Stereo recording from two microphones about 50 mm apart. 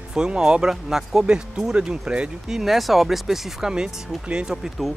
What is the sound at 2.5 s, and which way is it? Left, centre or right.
Speech, centre.